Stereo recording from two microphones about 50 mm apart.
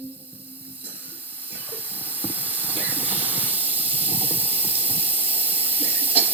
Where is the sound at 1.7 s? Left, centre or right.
Right.